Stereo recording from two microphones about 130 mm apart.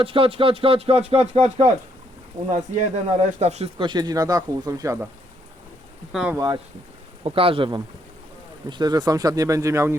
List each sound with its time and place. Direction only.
0.0 s speech: 45° right (ahead or behind)
2.5 s speech: 65° right (ahead or behind)
3.8 s speech: 35° right (ahead or behind)
6.1 s speech: 5° right (ahead or behind)
6.3 s speech: 30° right (ahead or behind)
7.3 s speech: 45° right (ahead or behind)
8.7 s speech: 30° right (ahead or behind)